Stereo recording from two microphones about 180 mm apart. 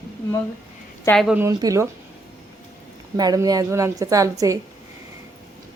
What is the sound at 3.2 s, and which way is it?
A woman's voice, 20° right (ahead or behind).